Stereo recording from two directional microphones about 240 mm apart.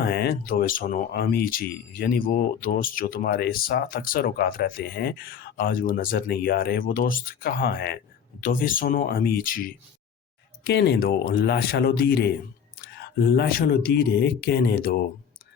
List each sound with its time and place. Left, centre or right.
0.0 s speech: left